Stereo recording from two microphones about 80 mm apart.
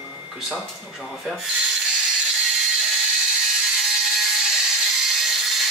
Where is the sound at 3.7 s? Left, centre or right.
Centre.